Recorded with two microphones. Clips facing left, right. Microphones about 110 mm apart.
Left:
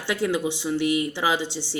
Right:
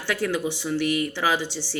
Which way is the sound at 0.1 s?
20° left (ahead or behind).